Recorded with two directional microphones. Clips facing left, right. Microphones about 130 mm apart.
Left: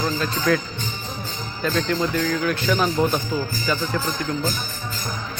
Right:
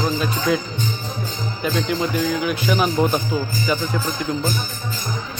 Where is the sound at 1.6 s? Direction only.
15° right (ahead or behind).